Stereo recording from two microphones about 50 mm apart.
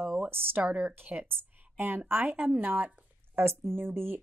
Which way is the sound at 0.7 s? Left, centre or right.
Right.